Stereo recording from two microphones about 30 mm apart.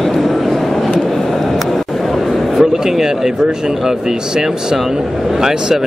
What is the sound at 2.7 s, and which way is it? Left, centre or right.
Speech, centre.